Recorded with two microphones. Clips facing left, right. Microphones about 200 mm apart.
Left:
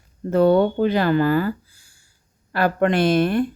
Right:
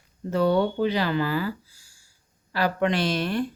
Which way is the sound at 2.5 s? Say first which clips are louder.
Left 5 dB; 50° left (ahead or behind).